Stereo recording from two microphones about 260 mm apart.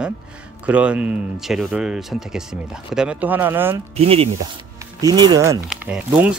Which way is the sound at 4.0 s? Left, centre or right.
Right.